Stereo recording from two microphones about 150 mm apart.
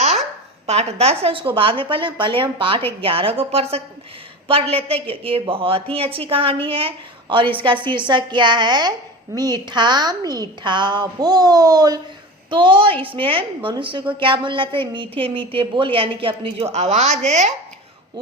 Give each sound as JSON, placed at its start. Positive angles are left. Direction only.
{"t": 0.7, "sound": "a woman's voice", "side_deg": -45}